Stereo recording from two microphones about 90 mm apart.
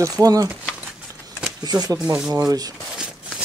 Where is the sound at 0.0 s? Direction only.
40° right (ahead or behind).